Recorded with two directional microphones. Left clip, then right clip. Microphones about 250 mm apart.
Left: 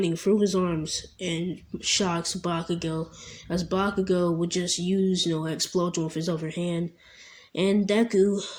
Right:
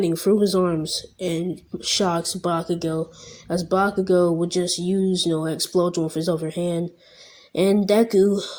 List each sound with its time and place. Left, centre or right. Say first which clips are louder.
0.0 s speech: right 4 dB; right